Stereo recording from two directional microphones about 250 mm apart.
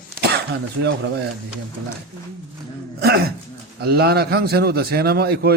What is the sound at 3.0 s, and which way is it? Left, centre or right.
A man's voice, right.